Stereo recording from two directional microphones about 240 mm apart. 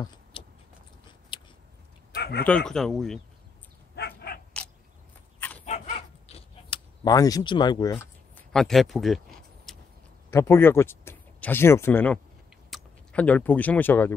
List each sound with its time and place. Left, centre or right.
0.3 s a sound: left
2.1 s a sound: left
2.4 s speech: centre
3.9 s dog: left
5.7 s bow-wow: left; by 9.2 s centre
10.3 s speech: centre